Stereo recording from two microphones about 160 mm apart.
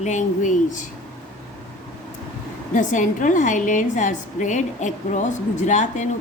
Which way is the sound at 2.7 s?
50° left (ahead or behind).